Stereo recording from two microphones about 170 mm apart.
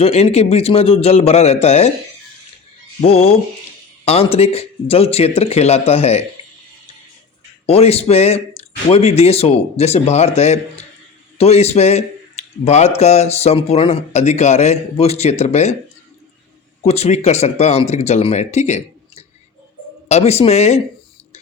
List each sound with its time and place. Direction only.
0.0 s speech: 35° left (ahead or behind)
3.0 s speech: 35° left (ahead or behind)
7.7 s speech: 35° left (ahead or behind)
16.8 s speech: 40° left (ahead or behind)